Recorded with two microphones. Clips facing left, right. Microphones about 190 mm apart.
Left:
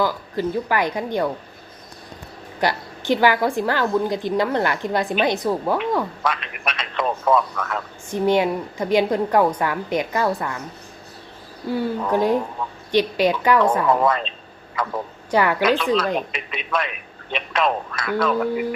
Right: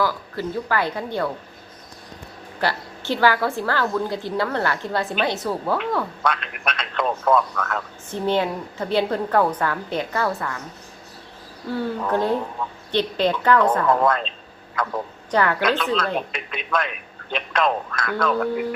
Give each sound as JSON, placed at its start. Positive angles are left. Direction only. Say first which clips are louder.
{"t": 0.0, "sound": "a woman's voice", "louder": "left 2 dB", "side_deg": 15}
{"t": 2.6, "sound": "a woman's voice", "louder": "left 2 dB", "side_deg": 15}
{"t": 6.3, "sound": "a man's voice", "louder": "even", "side_deg": 5}
{"t": 11.7, "sound": "a woman's voice", "louder": "left 2 dB", "side_deg": 10}